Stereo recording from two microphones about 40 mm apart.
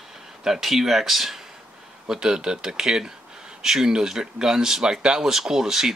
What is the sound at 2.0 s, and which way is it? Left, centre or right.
Speech, centre.